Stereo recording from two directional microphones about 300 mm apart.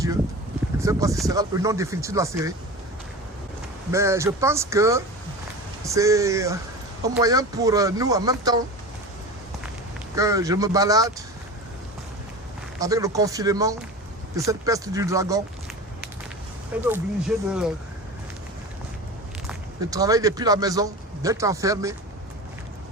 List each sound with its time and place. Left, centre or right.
0.8 s speech: centre
3.9 s speech: centre
10.2 s speech: centre
12.8 s speech: centre
16.8 s speech: centre
19.5 s a man's voice: centre